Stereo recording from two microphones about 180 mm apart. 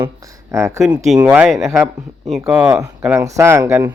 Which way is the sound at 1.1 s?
10° right (ahead or behind).